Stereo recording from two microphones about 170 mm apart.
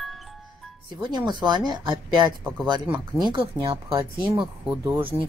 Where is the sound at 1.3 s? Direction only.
25° right (ahead or behind).